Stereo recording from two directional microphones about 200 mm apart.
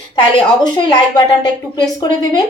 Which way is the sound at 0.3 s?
25° left (ahead or behind).